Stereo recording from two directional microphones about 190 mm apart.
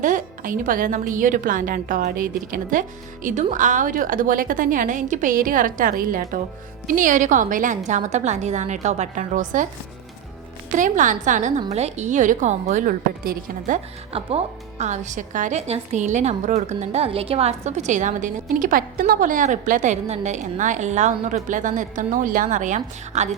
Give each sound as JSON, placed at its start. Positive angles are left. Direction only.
{"t": 0.0, "sound": "a woman's voice", "side_deg": -45}
{"t": 10.7, "sound": "a woman's voice", "side_deg": -40}